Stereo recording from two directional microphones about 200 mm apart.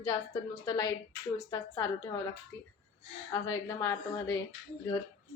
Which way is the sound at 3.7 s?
15° left (ahead or behind).